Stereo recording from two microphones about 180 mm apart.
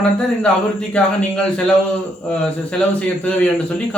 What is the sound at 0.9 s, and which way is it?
A man's voice, 5° left (ahead or behind).